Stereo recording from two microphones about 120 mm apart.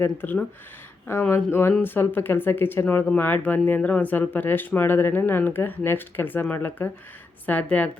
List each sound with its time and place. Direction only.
0.0 s speech: 15° left (ahead or behind)